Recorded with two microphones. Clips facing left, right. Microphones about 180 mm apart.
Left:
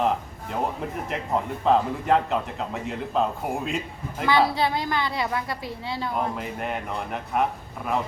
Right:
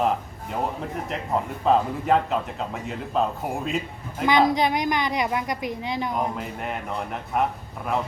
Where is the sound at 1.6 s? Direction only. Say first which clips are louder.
Right 1 dB; centre (ahead or behind).